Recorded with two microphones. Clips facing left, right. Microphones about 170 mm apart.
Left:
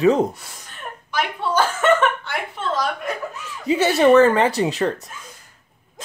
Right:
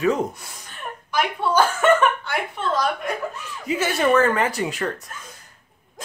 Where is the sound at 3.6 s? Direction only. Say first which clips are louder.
Left 6 dB; 30° left (ahead or behind).